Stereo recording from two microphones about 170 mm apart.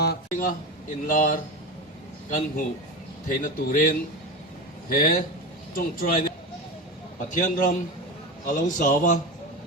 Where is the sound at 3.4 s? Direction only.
55° left (ahead or behind).